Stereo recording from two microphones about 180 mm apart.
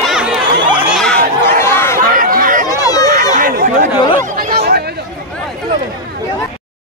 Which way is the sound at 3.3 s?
50° right (ahead or behind).